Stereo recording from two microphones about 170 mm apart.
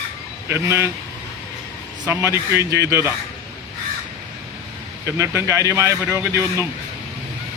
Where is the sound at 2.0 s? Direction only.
15° right (ahead or behind).